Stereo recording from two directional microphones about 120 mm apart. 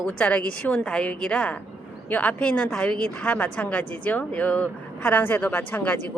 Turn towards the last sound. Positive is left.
turn(degrees=15)  # may be behind; listen again after turning